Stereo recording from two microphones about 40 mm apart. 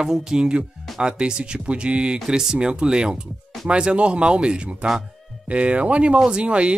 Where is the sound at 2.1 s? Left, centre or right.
Centre.